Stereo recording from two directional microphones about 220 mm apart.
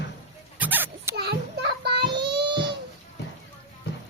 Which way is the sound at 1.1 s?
50° right (ahead or behind).